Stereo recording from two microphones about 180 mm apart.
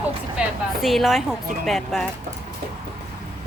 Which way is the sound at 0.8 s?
Centre (ahead or behind).